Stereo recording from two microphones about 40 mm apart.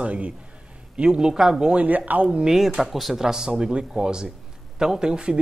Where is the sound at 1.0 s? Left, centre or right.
Right.